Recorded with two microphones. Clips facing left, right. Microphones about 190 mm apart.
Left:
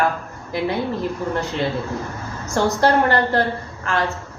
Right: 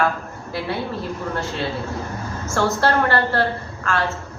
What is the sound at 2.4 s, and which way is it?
Speech, 15° left (ahead or behind).